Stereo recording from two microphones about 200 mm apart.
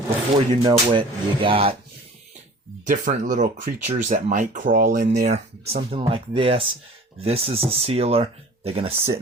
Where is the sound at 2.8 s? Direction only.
40° right (ahead or behind).